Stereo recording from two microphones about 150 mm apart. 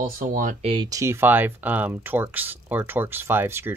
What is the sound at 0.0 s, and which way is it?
Speech, 65° right (ahead or behind).